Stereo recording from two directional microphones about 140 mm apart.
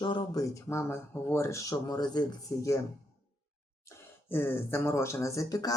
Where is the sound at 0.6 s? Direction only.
20° left (ahead or behind).